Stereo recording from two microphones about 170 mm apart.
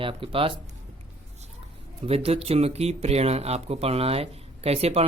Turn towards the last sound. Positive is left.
turn(degrees=-35)  # may be behind; listen again after turning